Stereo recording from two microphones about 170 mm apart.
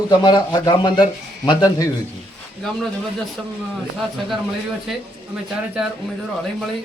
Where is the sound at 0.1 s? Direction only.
25° left (ahead or behind).